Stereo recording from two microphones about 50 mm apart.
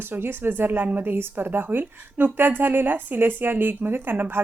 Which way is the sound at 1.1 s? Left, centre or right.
Right.